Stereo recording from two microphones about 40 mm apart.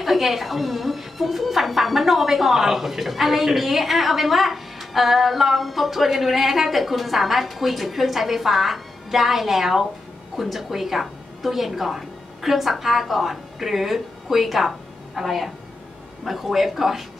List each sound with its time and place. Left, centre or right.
0.0 s a woman's voice: centre